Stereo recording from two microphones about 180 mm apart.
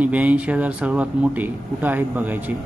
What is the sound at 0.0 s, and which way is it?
Speech, 10° right (ahead or behind).